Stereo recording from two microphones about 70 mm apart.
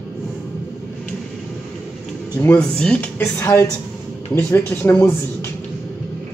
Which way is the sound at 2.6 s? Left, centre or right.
Centre.